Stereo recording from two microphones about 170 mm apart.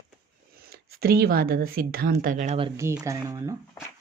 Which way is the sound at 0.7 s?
65° right (ahead or behind).